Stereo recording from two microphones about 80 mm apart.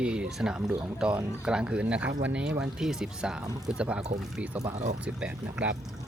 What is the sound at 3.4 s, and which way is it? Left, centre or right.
Speech, right.